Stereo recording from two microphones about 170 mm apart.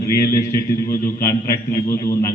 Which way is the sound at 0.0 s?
20° left (ahead or behind).